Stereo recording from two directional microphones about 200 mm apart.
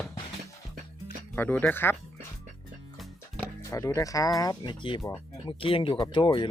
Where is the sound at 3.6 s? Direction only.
15° left (ahead or behind).